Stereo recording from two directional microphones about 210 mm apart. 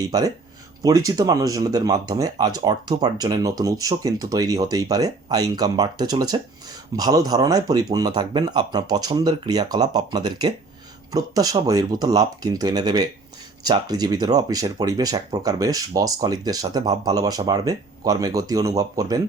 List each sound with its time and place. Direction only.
0.0 s speech: 15° right (ahead or behind)